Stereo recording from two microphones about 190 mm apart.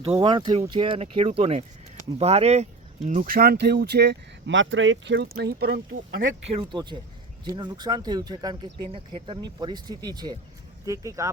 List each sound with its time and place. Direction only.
0.2 s speech: 25° right (ahead or behind); by 6.0 s 60° right (ahead or behind)
6.2 s speech: 45° right (ahead or behind)
6.6 s speech: 25° right (ahead or behind)